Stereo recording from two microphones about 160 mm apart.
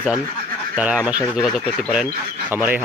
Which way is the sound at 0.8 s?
10° right (ahead or behind).